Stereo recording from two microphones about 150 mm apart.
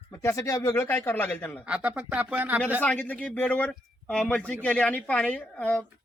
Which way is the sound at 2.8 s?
10° left (ahead or behind).